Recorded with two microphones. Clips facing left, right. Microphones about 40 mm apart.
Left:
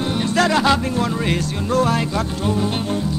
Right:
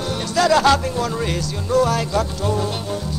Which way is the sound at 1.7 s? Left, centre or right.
Left.